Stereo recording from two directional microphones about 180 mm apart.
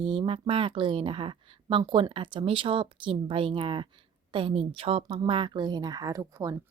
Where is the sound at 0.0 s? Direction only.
30° right (ahead or behind).